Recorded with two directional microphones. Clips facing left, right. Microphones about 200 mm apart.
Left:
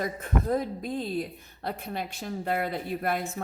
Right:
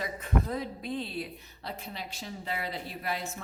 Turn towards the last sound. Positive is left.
turn(degrees=55)  # may be behind; listen again after turning